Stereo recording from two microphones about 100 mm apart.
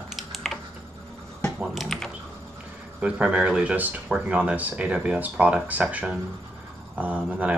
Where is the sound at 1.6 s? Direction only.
Centre (ahead or behind).